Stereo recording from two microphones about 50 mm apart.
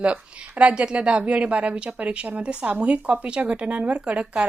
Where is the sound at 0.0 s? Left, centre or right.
Right.